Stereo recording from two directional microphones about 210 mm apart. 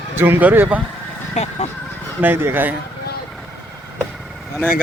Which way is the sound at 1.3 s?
30° left (ahead or behind).